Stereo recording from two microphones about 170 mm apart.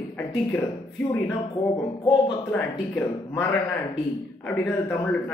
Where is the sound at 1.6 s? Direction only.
15° left (ahead or behind).